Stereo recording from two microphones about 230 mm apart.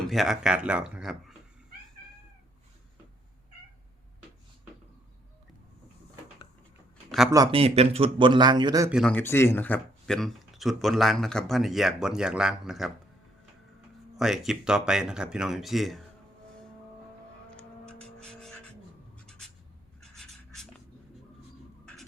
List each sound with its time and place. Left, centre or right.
0.0 s speech: centre
7.3 s a man's voice: centre
8.9 s speech: centre
14.2 s speech: centre
18.0 s music: centre
19.2 s writing: centre
20.0 s a sound: centre